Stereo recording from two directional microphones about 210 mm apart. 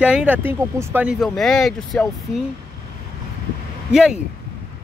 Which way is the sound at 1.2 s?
Centre (ahead or behind).